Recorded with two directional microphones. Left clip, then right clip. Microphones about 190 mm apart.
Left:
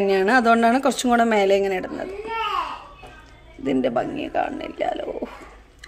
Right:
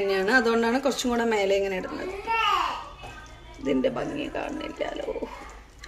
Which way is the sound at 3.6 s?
60° left (ahead or behind).